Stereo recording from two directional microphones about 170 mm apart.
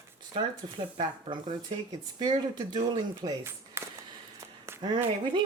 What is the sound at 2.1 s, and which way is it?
Speech, 25° right (ahead or behind).